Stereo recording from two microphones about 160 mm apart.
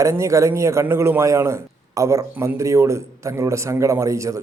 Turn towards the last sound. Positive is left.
turn(degrees=-20)  # may be behind; listen again after turning